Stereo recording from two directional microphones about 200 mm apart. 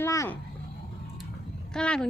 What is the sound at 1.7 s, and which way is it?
Speech, 5° left (ahead or behind).